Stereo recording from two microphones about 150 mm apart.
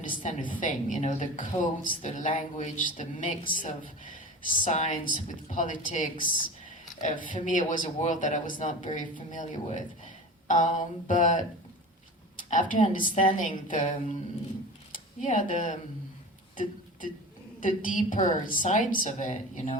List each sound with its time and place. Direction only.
0.0 s a woman's voice: 60° left (ahead or behind)
12.4 s a sound: 60° left (ahead or behind)
12.9 s a woman's voice: 60° left (ahead or behind)
17.6 s a woman's voice: 60° left (ahead or behind)